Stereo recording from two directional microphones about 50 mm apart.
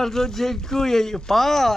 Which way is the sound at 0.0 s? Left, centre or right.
Centre.